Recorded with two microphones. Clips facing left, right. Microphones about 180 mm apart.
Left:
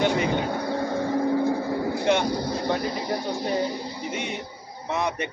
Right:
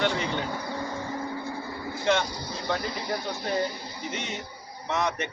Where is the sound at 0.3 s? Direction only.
55° left (ahead or behind); by 1.8 s 85° left.